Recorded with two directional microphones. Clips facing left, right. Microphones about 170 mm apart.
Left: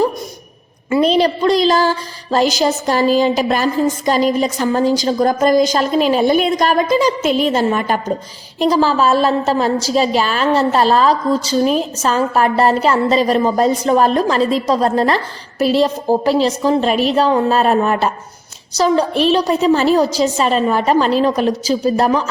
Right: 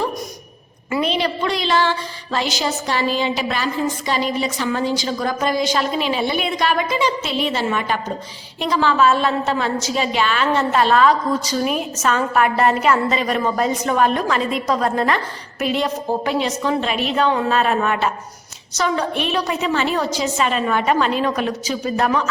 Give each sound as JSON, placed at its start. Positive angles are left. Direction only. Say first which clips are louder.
{"t": 0.9, "sound": "a woman's voice", "louder": "left 7 dB", "side_deg": 30}